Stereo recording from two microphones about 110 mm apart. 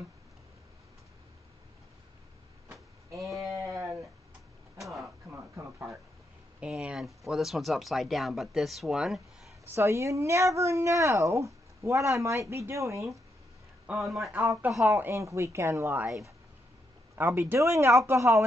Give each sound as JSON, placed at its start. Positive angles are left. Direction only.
{"t": 3.3, "sound": "sheep", "side_deg": 0}
{"t": 3.6, "sound": "a sound", "side_deg": -20}
{"t": 5.3, "sound": "a sound", "side_deg": -20}
{"t": 6.6, "sound": "speech", "side_deg": -5}
{"t": 9.8, "sound": "speech", "side_deg": -25}
{"t": 14.0, "sound": "speech", "side_deg": 0}
{"t": 14.9, "sound": "speech", "side_deg": -25}